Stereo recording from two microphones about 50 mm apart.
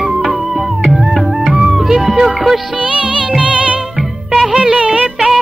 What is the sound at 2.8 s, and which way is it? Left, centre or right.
Music, right.